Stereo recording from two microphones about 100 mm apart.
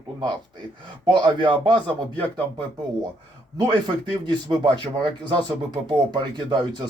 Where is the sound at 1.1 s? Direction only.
50° right (ahead or behind).